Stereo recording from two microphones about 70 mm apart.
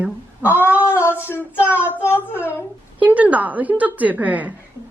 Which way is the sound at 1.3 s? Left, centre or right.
Left.